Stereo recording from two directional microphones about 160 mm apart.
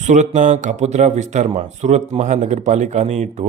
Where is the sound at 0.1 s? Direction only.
50° right (ahead or behind).